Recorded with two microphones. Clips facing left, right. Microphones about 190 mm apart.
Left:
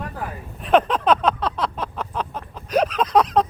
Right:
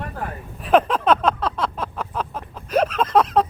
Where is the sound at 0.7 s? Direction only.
5° right (ahead or behind).